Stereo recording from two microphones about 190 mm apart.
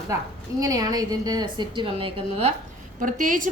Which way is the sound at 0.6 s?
20° right (ahead or behind).